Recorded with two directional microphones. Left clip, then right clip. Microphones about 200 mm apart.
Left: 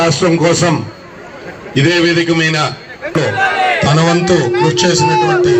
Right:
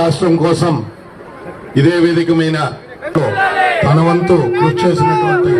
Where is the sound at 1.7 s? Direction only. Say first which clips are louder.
Even; 65° right (ahead or behind).